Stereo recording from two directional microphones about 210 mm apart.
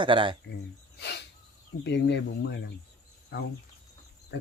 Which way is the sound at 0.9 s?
55° left (ahead or behind).